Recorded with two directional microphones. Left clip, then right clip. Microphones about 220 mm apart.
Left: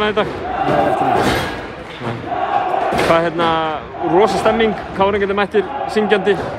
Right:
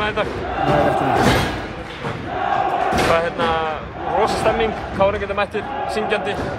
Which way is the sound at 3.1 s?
30° left (ahead or behind).